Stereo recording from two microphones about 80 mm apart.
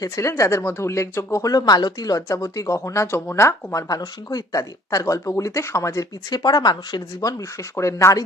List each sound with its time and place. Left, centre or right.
0.0 s speech: left
6.3 s speech: left